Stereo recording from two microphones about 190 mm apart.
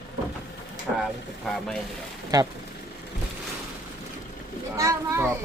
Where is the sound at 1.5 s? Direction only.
Centre (ahead or behind).